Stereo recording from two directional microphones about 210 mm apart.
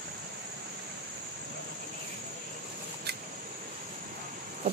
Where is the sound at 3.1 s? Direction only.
50° right (ahead or behind).